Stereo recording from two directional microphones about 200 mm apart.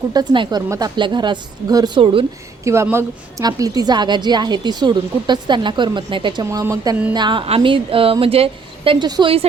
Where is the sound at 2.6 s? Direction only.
15° right (ahead or behind).